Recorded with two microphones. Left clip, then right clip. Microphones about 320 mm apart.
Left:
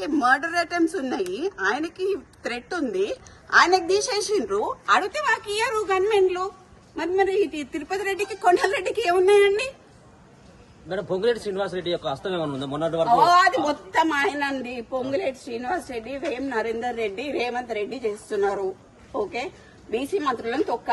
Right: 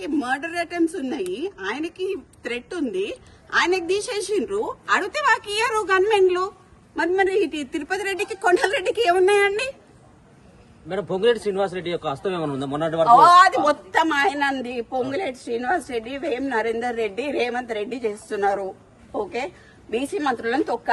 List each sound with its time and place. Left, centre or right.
0.0 s a woman's voice: centre
5.0 s a woman's voice: centre
7.7 s a woman's voice: centre
10.9 s a man's voice: right
13.2 s a woman's voice: centre
19.9 s a woman's voice: centre